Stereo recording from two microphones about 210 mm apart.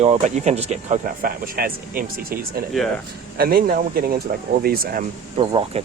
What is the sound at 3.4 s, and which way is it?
Speech, 45° right (ahead or behind).